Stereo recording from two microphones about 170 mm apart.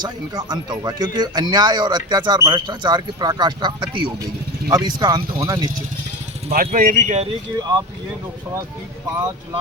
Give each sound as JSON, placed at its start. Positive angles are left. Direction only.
{"t": 0.0, "sound": "speech", "side_deg": -25}
{"t": 6.5, "sound": "speech", "side_deg": -55}
{"t": 7.6, "sound": "speech", "side_deg": -20}